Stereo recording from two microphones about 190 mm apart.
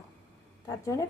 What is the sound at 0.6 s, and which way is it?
Speech, 15° left (ahead or behind).